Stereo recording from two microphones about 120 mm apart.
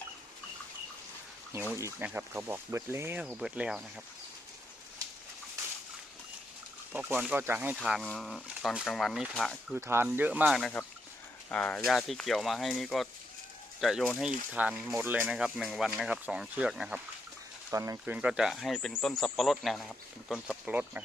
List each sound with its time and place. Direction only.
1.7 s speech: 20° right (ahead or behind)
3.2 s speech: 10° right (ahead or behind)
6.9 s speech: 10° right (ahead or behind)
7.9 s speech: centre (ahead or behind)
9.7 s speech: 20° right (ahead or behind)
10.6 s speech: 10° left (ahead or behind); by 14.9 s 5° right (ahead or behind)
14.9 s speech: 15° right (ahead or behind)
15.3 s speech: 5° right (ahead or behind)
17.7 s speech: 25° right (ahead or behind)
18.0 s speech: 10° right (ahead or behind)
20.7 s speech: 15° right (ahead or behind)